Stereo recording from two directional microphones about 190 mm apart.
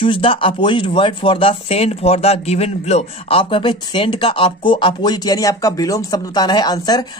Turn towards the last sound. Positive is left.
turn(degrees=20)  # may be behind; listen again after turning